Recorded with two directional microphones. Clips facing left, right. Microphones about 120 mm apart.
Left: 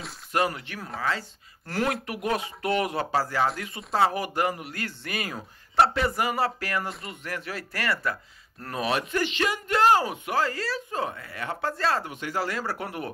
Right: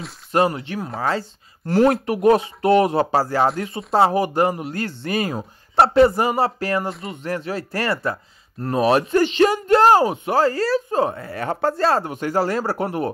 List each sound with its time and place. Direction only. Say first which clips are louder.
0.3 s speech: right 7 dB; 30° right (ahead or behind)